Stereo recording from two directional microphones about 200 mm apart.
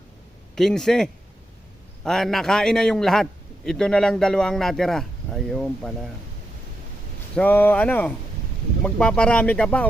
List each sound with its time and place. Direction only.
0.5 s a man's voice: centre (ahead or behind)
7.3 s a man's voice: 10° left (ahead or behind)